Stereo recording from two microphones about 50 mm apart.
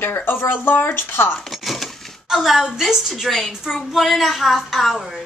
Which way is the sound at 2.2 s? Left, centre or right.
Centre.